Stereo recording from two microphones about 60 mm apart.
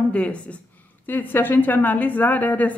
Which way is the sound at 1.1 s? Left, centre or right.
Left.